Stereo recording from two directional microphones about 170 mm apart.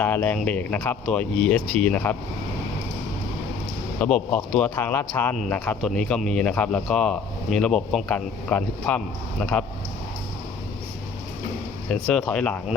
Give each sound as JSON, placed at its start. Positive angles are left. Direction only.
{"t": 0.0, "sound": "speech", "side_deg": 10}
{"t": 4.0, "sound": "speech", "side_deg": 10}
{"t": 11.9, "sound": "speech", "side_deg": 0}